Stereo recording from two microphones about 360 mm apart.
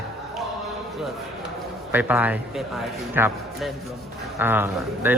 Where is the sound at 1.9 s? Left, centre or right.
Centre.